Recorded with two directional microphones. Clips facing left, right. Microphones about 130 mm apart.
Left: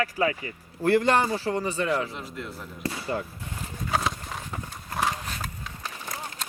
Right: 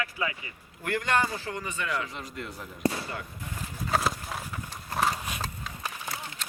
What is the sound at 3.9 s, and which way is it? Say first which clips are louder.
Horse: even; 5° right (ahead or behind).